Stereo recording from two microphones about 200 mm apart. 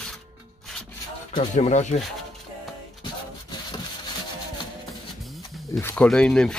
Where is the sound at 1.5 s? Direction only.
35° left (ahead or behind).